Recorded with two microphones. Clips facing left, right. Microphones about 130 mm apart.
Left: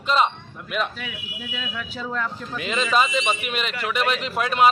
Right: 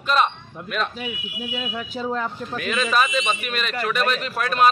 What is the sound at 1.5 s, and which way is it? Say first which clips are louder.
Speech: right 3 dB; 30° right (ahead or behind).